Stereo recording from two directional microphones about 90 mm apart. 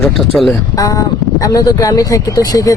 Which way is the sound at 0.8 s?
40° left (ahead or behind).